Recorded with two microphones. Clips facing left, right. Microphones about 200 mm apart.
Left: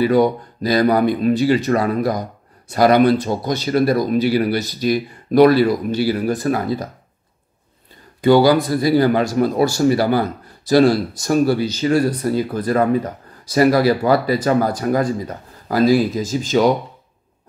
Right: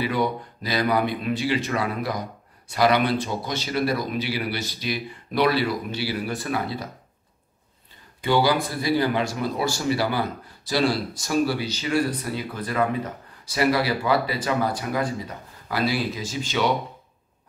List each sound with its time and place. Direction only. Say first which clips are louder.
0.0 s speech: left 10 dB; 40° left (ahead or behind)
8.2 s speech: left 9 dB; 40° left (ahead or behind)